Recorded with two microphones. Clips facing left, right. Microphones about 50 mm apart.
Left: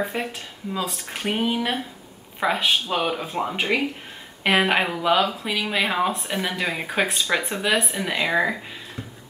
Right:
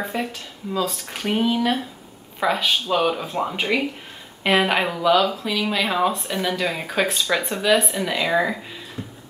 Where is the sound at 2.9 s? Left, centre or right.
Centre.